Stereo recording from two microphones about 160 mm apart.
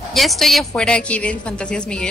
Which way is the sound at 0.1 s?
Centre (ahead or behind).